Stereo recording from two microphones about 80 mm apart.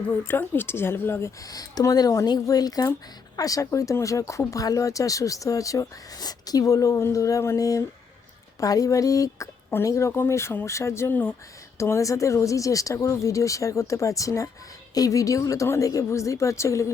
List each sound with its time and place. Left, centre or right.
0.3 s speech: left
1.5 s speech: left
11.8 s speech: left